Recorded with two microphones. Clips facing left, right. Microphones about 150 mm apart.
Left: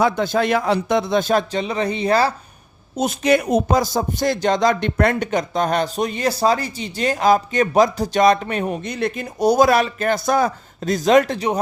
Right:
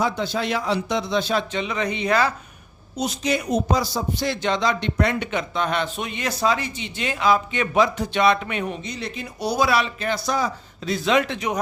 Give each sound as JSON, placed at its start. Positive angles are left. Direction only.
{"t": 0.0, "sound": "speech", "side_deg": 50}
{"t": 2.9, "sound": "speech", "side_deg": 50}
{"t": 8.8, "sound": "speech", "side_deg": 55}